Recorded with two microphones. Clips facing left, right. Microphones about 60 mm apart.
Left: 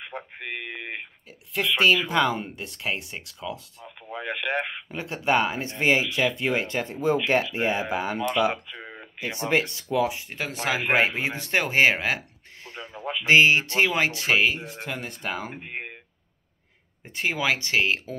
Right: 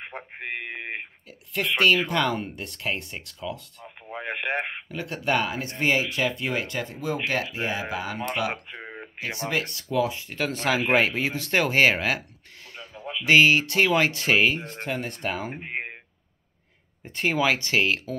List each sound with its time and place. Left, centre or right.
0.0 s speech: right
1.6 s speech: centre
3.8 s radio: right
4.8 s speech: left
8.2 s speech: right
8.7 s a sound: right
9.4 s speech: left
10.0 s speech: centre
12.7 s a sound: left
13.2 s speech: left; by 15.5 s centre
15.5 s speech: right
17.1 s speech: centre
17.6 s speech: centre